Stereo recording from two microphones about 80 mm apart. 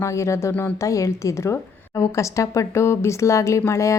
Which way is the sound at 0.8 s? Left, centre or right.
Left.